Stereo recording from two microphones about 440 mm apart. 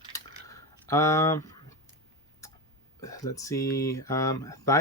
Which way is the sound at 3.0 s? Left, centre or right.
Centre.